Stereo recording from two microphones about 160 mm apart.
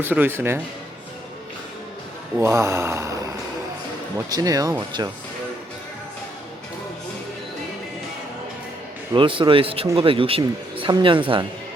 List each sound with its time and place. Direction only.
0.0 s speech: 10° right (ahead or behind)
2.4 s speech: 20° right (ahead or behind)
4.3 s speech: 25° right (ahead or behind)
9.1 s speech: 30° right (ahead or behind)